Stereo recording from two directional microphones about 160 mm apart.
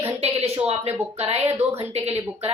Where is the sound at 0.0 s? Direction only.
40° right (ahead or behind).